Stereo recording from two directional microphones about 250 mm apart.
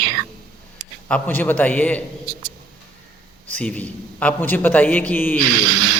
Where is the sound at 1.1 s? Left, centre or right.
Centre.